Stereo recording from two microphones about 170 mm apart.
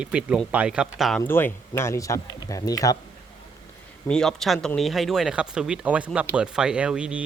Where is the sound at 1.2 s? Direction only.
15° left (ahead or behind).